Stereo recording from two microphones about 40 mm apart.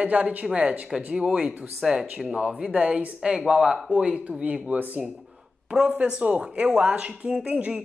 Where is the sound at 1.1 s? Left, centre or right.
Right.